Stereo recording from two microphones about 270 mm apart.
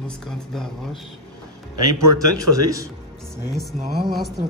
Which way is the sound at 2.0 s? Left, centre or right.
Centre.